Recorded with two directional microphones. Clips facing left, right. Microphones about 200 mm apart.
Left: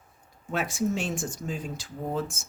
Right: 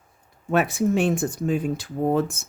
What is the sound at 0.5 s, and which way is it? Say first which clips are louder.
Speech: right 7 dB; 60° right (ahead or behind).